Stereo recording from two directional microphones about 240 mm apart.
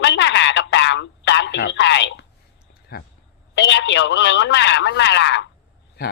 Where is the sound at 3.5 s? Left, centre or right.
Left.